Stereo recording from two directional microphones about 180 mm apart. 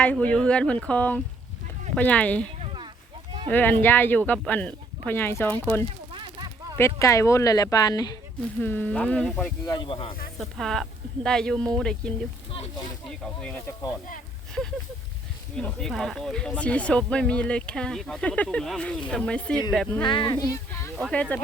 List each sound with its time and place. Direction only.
0.0 s speech: 5° left (ahead or behind)
2.6 s a sound: 25° right (ahead or behind)
3.5 s speech: 10° left (ahead or behind)
6.1 s a sound: 25° right (ahead or behind)
6.7 s speech: 15° left (ahead or behind)
8.5 s speech: 10° left (ahead or behind)
9.6 s speech: 25° left (ahead or behind)
10.3 s speech: centre (ahead or behind)
12.5 s speech: 30° left (ahead or behind)
13.4 s speech: 5° left (ahead or behind)
15.5 s speech: 5° left (ahead or behind)
20.0 s speech: 25° left (ahead or behind)
20.9 s speech: 5° left (ahead or behind)